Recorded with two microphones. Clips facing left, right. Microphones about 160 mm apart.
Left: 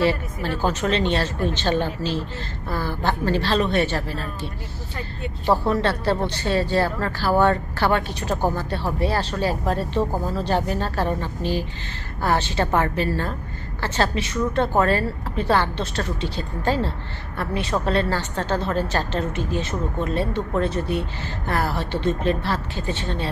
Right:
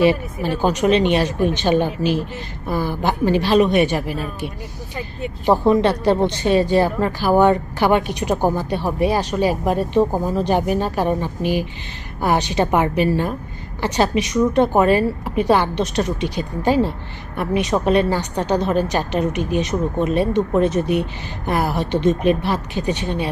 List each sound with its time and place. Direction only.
0.0 s speech: 15° right (ahead or behind)